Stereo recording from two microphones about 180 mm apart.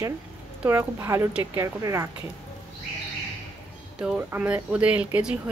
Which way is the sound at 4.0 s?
5° right (ahead or behind).